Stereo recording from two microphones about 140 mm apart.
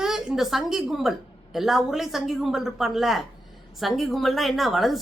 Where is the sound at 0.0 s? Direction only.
5° right (ahead or behind).